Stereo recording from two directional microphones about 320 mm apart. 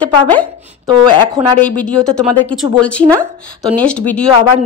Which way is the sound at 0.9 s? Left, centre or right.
Centre.